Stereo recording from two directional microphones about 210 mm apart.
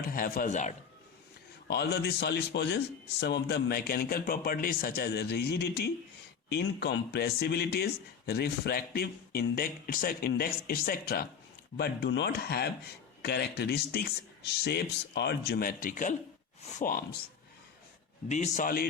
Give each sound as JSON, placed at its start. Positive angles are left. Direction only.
{"t": 0.1, "sound": "speech", "side_deg": 45}
{"t": 1.6, "sound": "a man's voice", "side_deg": 50}
{"t": 18.3, "sound": "a man's voice", "side_deg": 35}